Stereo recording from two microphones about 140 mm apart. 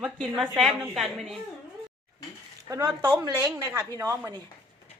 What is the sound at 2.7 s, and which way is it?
A woman's voice, 20° right (ahead or behind).